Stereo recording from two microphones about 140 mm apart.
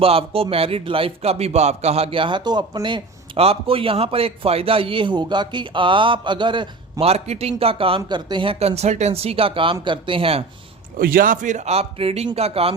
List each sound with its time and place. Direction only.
0.0 s speech: 45° right (ahead or behind)
10.9 s speech: 90° right; by 12.7 s 45° right (ahead or behind)